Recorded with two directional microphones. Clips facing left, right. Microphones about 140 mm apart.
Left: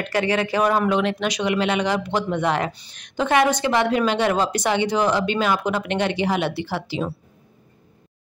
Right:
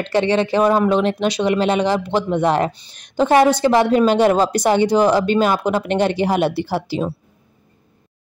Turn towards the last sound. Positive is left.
turn(degrees=-40)  # may be behind; listen again after turning